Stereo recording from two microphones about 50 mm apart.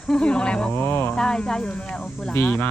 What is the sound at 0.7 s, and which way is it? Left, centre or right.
Speech, left.